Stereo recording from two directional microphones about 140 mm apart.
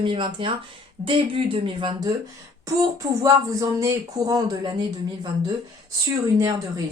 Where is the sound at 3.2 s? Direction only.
25° right (ahead or behind).